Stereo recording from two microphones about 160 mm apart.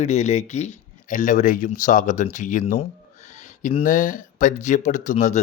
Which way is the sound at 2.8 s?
45° left (ahead or behind).